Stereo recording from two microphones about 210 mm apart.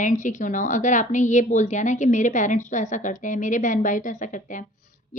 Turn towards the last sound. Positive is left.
turn(degrees=35)  # may be behind; listen again after turning